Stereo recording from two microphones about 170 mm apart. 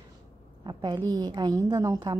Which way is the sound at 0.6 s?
25° right (ahead or behind).